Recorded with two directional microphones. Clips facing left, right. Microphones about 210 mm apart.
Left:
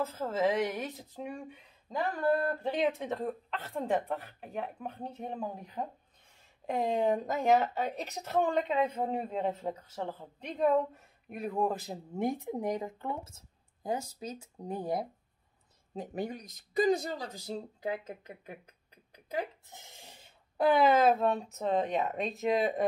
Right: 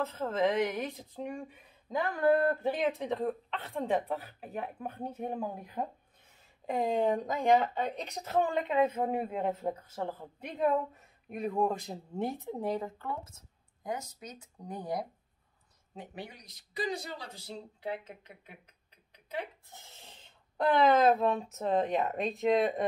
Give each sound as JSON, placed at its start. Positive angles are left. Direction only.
{"t": 0.0, "sound": "speech", "side_deg": 0}
{"t": 2.6, "sound": "speech", "side_deg": 0}
{"t": 6.6, "sound": "speech", "side_deg": 0}
{"t": 12.3, "sound": "speech", "side_deg": 15}
{"t": 16.0, "sound": "speech", "side_deg": 45}
{"t": 19.7, "sound": "speech", "side_deg": 15}